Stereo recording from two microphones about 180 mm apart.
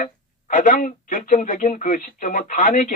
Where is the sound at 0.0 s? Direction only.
45° left (ahead or behind).